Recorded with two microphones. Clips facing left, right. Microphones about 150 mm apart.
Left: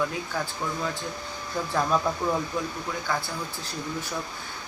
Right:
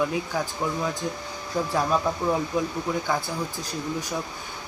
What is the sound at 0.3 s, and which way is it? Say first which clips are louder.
Speech: right 1 dB; 15° right (ahead or behind).